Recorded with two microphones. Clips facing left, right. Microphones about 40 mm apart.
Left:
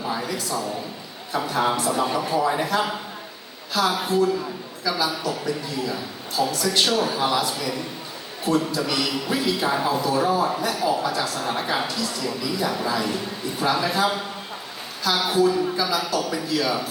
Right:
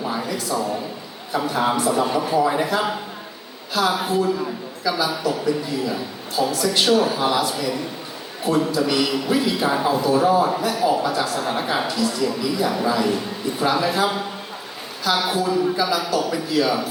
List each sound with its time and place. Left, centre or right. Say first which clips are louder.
0.0 s a sound: right 2 dB; centre
1.3 s a man's voice: right 2 dB; centre
10.6 s a man's voice: right 3 dB; centre